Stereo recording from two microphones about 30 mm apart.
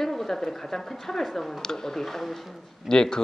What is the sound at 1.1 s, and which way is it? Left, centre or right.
Speech, centre.